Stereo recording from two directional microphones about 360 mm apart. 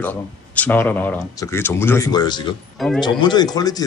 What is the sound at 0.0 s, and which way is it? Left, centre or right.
Speech, centre.